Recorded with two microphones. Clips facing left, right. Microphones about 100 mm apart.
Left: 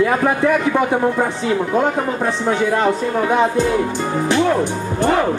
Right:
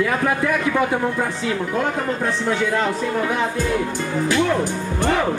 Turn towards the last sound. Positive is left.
turn(degrees=20)  # may be behind; listen again after turning